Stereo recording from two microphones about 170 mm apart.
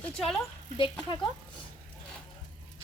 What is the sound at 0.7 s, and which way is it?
Speech, 30° left (ahead or behind).